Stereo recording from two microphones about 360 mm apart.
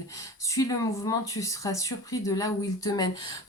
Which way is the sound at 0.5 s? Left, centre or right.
Centre.